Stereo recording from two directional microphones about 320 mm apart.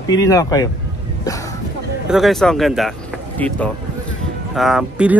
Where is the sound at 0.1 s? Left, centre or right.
Centre.